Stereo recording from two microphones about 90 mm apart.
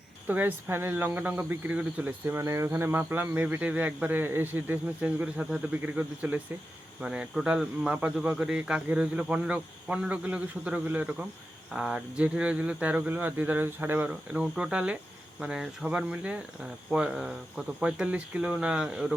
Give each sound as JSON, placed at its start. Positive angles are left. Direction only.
{"t": 0.3, "sound": "speech", "side_deg": -20}